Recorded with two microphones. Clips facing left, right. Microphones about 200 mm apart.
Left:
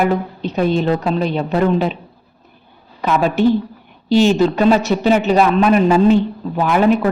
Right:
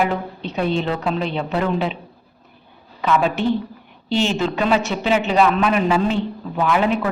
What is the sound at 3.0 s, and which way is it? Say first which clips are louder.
A woman's voice: left 4 dB; 40° left (ahead or behind).